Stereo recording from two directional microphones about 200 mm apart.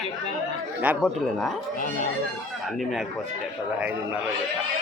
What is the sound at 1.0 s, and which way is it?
Speech, 5° left (ahead or behind).